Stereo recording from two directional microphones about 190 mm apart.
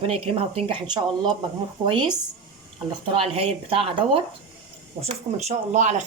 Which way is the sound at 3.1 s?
30° right (ahead or behind).